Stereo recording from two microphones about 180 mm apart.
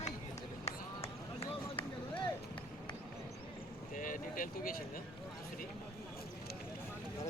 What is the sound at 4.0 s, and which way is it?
Vehicle, 50° left (ahead or behind).